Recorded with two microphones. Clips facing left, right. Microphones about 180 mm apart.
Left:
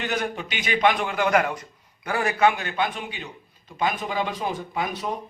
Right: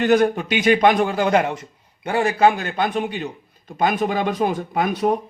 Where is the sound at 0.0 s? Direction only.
45° right (ahead or behind).